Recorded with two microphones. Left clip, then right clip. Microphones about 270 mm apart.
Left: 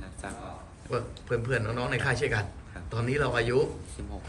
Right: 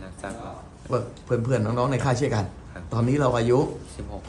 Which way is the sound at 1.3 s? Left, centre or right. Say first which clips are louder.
Right 5 dB; centre.